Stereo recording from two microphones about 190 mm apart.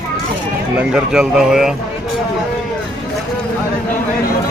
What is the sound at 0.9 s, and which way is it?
Speech, 5° right (ahead or behind).